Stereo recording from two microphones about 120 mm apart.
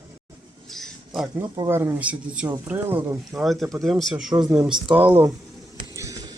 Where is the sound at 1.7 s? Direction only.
20° right (ahead or behind).